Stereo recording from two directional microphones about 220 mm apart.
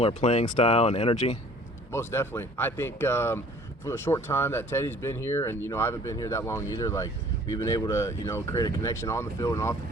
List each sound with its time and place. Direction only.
0.0 s speech: 30° left (ahead or behind)
1.9 s speech: 10° left (ahead or behind)